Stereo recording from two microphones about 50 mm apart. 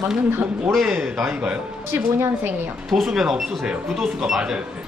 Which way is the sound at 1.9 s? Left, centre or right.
Right.